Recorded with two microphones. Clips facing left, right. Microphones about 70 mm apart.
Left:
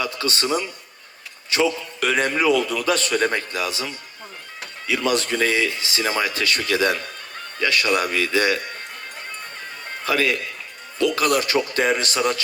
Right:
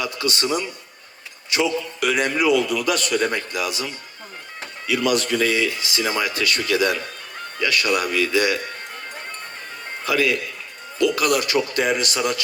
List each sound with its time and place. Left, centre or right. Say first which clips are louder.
0.0 s a man's voice: even; left
4.9 s a man's voice: right 1 dB; left
10.1 s a man's voice: right 1 dB; left